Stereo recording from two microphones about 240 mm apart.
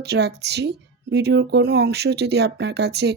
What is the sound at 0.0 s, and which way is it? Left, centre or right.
A woman's voice, right.